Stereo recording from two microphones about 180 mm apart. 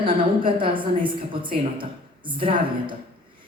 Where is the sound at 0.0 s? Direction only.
30° right (ahead or behind).